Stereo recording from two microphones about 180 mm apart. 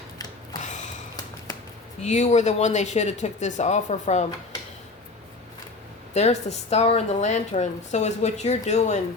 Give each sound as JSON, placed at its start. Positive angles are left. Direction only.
{"t": 0.5, "sound": "a sound", "side_deg": 20}
{"t": 2.0, "sound": "speech", "side_deg": 40}
{"t": 6.1, "sound": "speech", "side_deg": 35}